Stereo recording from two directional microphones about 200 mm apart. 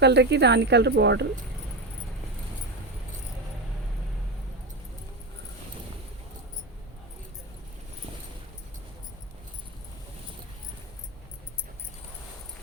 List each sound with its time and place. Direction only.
0.0 s speech: 60° right (ahead or behind)